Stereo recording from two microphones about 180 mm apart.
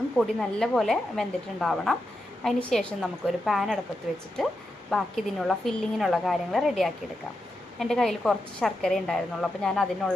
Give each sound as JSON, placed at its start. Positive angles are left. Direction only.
{"t": 0.2, "sound": "a woman's voice", "side_deg": 0}
{"t": 4.9, "sound": "a woman's voice", "side_deg": 0}